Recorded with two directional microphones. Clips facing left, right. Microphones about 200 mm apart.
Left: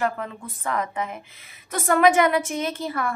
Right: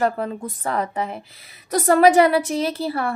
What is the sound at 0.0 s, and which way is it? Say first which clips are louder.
A woman's voice: right 5 dB; 35° right (ahead or behind).